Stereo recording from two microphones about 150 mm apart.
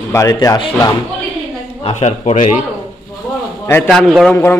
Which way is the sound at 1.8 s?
45° left (ahead or behind).